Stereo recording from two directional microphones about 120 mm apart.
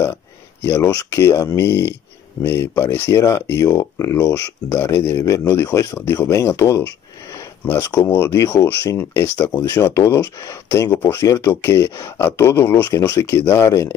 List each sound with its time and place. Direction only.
0.0 s speech: 25° left (ahead or behind)
7.8 s speech: 25° left (ahead or behind)
11.0 s speech: 15° left (ahead or behind)
11.2 s speech: 30° left (ahead or behind)